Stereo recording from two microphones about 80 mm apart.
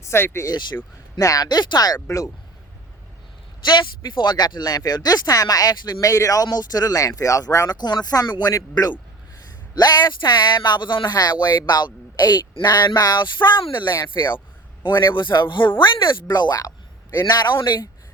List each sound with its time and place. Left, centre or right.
0.0 s a sound: left
1.2 s speech: left
1.5 s speech: left
2.0 s speech: left
3.7 s speech: left
5.7 s speech: left
6.0 s speech: left
7.7 s speech: left
17.2 s speech: left